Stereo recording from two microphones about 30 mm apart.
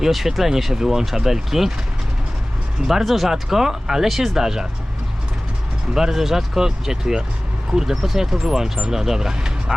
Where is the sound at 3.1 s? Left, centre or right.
Centre.